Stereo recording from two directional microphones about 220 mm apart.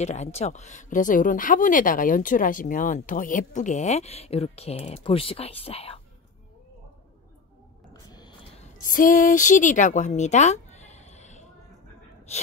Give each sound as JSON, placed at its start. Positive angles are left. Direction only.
{"t": 0.0, "sound": "speech", "side_deg": 30}
{"t": 7.9, "sound": "whale vocalization", "side_deg": 20}
{"t": 8.8, "sound": "speech", "side_deg": 40}